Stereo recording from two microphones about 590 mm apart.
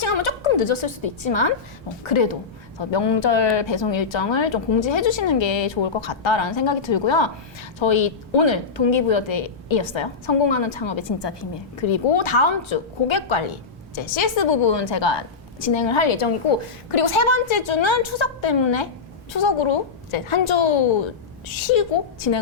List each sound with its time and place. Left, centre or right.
0.0 s a woman's voice: left